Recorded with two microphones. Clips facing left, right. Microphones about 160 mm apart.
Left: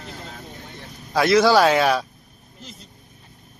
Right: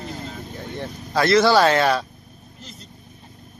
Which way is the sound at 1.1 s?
10° left (ahead or behind).